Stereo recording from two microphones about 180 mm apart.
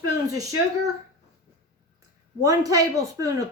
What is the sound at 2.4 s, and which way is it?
Speech, 20° right (ahead or behind).